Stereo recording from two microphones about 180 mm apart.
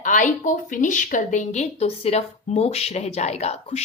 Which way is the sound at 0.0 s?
45° left (ahead or behind).